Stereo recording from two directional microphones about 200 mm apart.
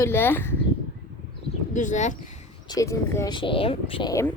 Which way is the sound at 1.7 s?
40° left (ahead or behind).